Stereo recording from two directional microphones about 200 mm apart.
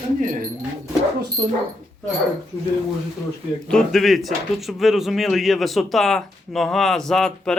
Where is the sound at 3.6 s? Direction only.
Centre (ahead or behind).